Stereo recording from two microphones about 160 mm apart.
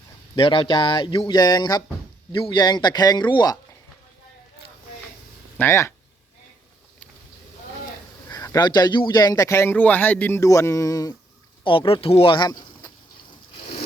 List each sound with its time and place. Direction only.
0.3 s speech: 35° left (ahead or behind)
5.5 s speech: 15° left (ahead or behind)
8.3 s speech: 20° left (ahead or behind)
11.6 s speech: 35° left (ahead or behind)